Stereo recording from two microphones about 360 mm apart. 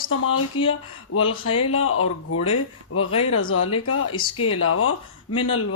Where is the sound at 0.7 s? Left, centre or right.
Left.